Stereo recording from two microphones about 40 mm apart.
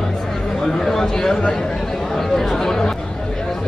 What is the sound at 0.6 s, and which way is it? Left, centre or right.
A man's voice, centre.